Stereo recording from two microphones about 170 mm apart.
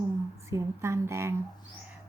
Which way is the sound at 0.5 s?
15° right (ahead or behind).